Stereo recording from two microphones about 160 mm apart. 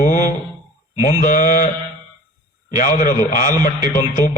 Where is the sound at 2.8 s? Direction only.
55° left (ahead or behind).